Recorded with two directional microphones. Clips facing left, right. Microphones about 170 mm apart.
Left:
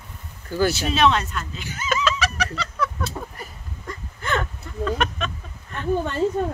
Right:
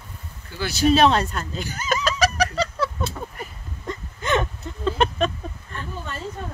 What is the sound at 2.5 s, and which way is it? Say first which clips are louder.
Chicken: right 3 dB; 35° right (ahead or behind).